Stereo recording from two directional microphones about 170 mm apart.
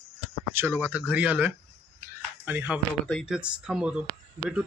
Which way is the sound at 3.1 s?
5° left (ahead or behind).